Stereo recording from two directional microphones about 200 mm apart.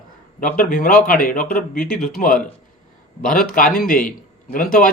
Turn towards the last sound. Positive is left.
turn(degrees=45)  # may be behind; listen again after turning